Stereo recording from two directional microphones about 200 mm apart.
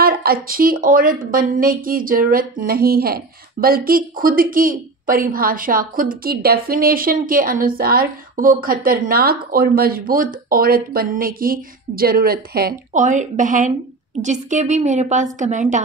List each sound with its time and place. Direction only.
0.0 s a woman's voice: 50° right (ahead or behind)